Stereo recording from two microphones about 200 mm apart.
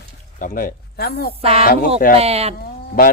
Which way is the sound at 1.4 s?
30° right (ahead or behind).